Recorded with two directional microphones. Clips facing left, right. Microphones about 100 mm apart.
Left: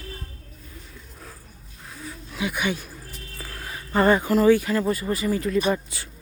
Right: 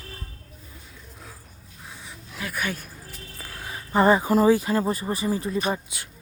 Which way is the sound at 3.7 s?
15° right (ahead or behind).